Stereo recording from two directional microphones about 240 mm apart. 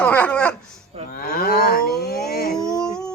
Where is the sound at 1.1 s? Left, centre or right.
Left.